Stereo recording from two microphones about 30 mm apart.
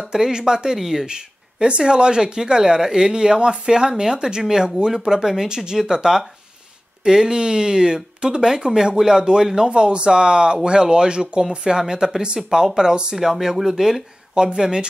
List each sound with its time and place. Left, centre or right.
0.1 s speech: right
0.7 s speech: centre
1.0 s a sound: right
1.7 s speech: right
9.7 s speech: right
11.7 s speech: centre
14.3 s speech: right